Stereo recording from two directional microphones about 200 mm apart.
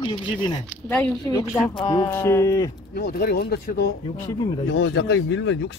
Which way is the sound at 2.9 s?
50° left (ahead or behind).